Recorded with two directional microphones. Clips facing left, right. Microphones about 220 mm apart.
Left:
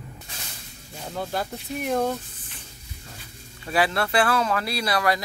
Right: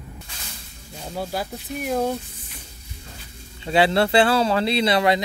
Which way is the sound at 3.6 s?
25° right (ahead or behind).